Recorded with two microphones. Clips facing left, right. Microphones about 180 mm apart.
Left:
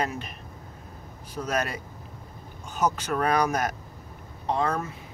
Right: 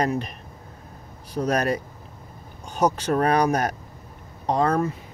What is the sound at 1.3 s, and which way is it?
Speech, 35° right (ahead or behind).